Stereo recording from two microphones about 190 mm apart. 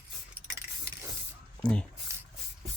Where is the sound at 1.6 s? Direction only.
5° left (ahead or behind).